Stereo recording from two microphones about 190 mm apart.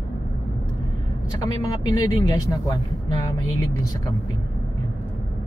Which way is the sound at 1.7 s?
20° left (ahead or behind).